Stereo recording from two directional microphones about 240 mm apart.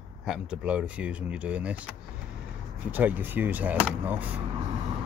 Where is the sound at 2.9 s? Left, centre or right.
Centre.